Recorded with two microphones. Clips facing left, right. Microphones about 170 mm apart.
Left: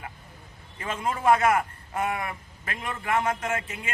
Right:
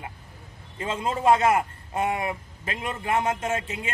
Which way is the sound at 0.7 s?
25° right (ahead or behind).